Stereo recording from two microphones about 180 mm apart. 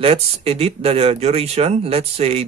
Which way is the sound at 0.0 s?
35° right (ahead or behind).